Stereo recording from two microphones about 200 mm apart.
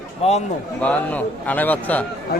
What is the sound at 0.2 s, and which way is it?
Speech, 30° left (ahead or behind).